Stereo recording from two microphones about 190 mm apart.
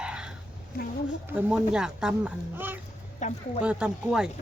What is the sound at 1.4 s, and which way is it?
Speech, 5° right (ahead or behind).